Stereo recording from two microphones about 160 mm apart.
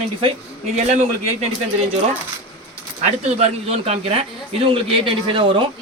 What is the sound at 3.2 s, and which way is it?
Speech, 40° right (ahead or behind).